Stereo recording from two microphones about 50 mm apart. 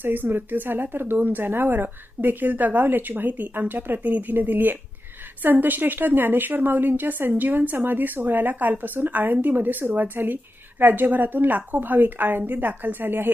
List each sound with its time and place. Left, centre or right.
0.0 s speech: right